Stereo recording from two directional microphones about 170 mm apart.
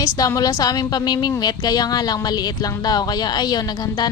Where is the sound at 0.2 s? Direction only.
20° left (ahead or behind).